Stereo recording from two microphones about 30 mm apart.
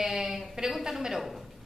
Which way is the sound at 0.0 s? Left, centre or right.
Centre.